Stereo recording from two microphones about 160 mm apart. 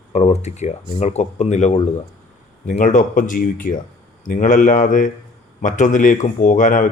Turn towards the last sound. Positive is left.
turn(degrees=50)  # may be behind; listen again after turning